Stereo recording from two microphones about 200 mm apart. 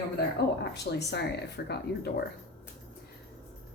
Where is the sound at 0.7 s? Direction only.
55° left (ahead or behind).